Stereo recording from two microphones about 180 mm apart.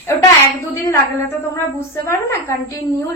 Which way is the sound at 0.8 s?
15° left (ahead or behind).